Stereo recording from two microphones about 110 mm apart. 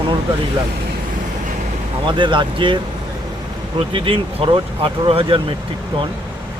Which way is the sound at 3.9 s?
55° right (ahead or behind).